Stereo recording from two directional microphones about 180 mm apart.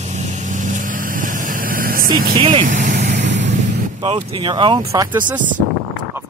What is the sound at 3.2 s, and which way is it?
Vehicle, 80° right.